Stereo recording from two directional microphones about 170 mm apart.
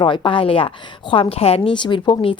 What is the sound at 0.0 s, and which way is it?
A woman's voice, 30° left (ahead or behind).